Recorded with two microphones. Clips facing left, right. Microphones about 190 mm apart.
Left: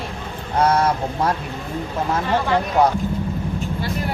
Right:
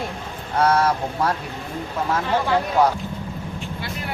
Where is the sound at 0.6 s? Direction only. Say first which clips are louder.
Left 1 dB; 20° left (ahead or behind).